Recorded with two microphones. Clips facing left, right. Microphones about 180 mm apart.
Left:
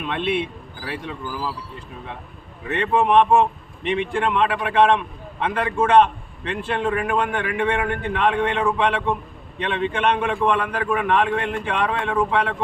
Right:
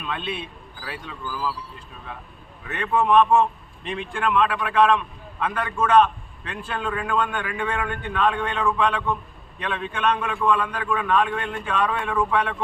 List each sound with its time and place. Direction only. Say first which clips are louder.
0.2 s speech: left 8 dB; 90° left
0.9 s a man's voice: left 4 dB; 25° left (ahead or behind)
2.6 s a man's voice: left 2 dB; 25° left (ahead or behind)
3.8 s a man's voice: left 8 dB; 85° left
4.1 s a man's voice: right 2 dB; 25° left (ahead or behind)